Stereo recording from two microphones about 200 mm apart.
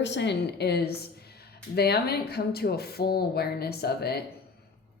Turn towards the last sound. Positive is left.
turn(degrees=50)  # may be behind; listen again after turning